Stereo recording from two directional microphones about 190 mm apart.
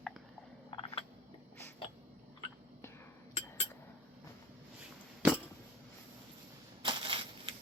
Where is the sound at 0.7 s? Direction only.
25° left (ahead or behind).